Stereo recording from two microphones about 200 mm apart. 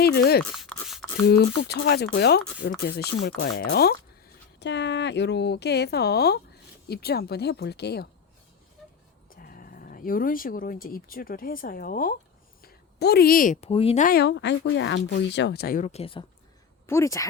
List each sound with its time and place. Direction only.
0.0 s a sound: 55° left (ahead or behind)
0.5 s a sound: centre (ahead or behind)
1.2 s speech: 55° left (ahead or behind)
9.3 s speech: 45° left (ahead or behind)
14.2 s speech: 60° left (ahead or behind)
15.9 s speech: 30° left (ahead or behind)
16.8 s speech: 15° left (ahead or behind)